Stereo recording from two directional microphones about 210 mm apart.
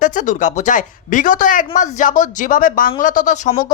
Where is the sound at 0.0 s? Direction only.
35° left (ahead or behind).